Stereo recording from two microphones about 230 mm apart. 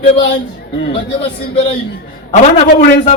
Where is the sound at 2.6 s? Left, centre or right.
Left.